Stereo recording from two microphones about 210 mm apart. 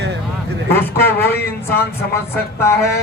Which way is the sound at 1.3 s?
10° left (ahead or behind).